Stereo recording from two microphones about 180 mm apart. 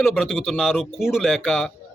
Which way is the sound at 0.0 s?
Centre (ahead or behind).